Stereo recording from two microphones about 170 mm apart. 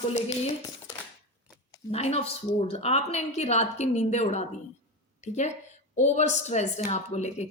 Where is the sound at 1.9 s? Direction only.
35° left (ahead or behind).